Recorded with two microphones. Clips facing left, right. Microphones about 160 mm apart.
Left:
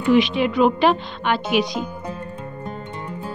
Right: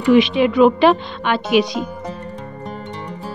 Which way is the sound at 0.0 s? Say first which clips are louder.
Right 4 dB; 85° right.